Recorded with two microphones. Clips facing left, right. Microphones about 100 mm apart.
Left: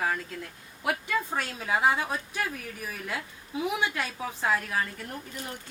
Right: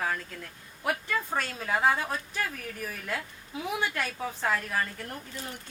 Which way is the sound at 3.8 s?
15° left (ahead or behind).